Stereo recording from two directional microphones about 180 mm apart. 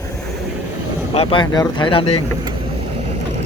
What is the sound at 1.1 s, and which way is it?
Speech, 30° left (ahead or behind).